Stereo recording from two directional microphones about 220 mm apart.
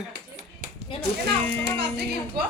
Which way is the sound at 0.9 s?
25° left (ahead or behind).